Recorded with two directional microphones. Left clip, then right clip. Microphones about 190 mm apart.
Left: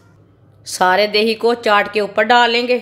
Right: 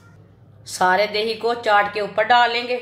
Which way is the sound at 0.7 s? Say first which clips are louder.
Left 4 dB; 50° left (ahead or behind).